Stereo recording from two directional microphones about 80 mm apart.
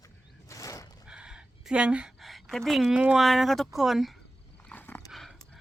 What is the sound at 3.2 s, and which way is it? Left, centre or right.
Speech, centre.